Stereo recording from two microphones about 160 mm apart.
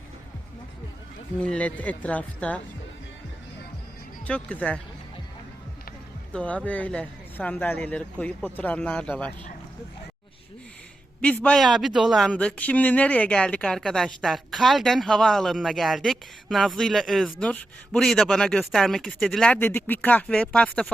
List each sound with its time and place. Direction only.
1.4 s a man's voice: 10° left (ahead or behind)
4.3 s a man's voice: 5° left (ahead or behind)
6.3 s a man's voice: 10° left (ahead or behind)
11.2 s a man's voice: 10° left (ahead or behind)